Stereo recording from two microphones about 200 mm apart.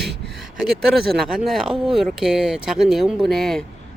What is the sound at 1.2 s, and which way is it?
Speech, centre (ahead or behind).